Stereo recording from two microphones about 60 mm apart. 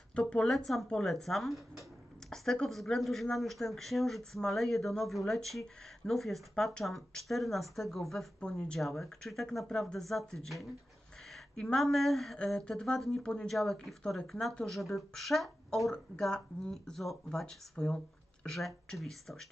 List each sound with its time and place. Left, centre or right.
0.5 s speech: centre
8.4 s speech: centre
11.7 s speech: centre
13.5 s speech: centre
17.7 s a sound: centre
18.5 s speech: centre